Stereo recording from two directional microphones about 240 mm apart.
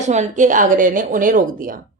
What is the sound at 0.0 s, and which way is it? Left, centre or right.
Speech, right.